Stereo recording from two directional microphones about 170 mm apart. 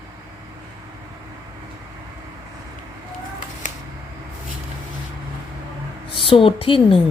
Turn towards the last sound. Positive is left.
turn(degrees=30)  # may be behind; listen again after turning